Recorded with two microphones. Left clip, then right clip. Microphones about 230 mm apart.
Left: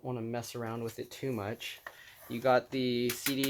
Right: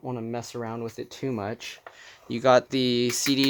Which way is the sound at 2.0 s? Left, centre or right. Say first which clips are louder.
Right 10 dB; right.